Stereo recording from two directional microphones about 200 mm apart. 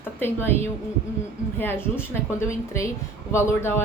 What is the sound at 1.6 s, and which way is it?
Speech, 10° left (ahead or behind).